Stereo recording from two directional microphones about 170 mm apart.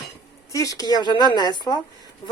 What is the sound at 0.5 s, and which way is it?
A woman's voice, 20° left (ahead or behind).